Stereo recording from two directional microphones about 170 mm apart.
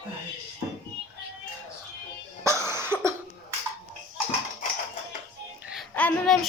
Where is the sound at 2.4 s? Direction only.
15° right (ahead or behind).